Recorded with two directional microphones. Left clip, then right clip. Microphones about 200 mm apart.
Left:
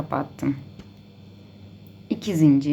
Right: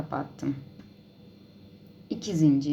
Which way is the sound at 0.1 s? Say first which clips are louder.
Left 7 dB; 15° left (ahead or behind).